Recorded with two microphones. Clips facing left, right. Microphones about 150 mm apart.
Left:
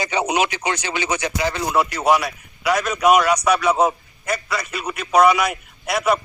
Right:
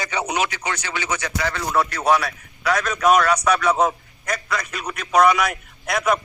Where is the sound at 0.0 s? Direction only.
20° left (ahead or behind).